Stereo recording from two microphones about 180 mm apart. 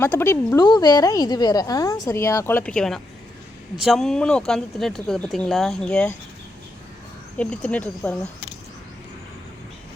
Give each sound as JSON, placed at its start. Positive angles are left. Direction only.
{"t": 0.0, "sound": "a woman's voice", "side_deg": 10}
{"t": 7.3, "sound": "speech", "side_deg": 5}